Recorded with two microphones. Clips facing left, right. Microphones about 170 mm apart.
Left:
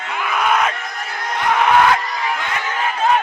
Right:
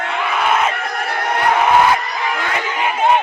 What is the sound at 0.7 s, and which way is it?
Crowd, 65° right (ahead or behind).